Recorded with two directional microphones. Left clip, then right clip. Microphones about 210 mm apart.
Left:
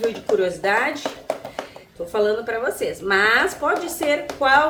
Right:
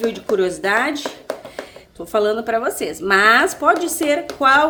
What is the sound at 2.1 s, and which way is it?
A woman's voice, 50° right (ahead or behind).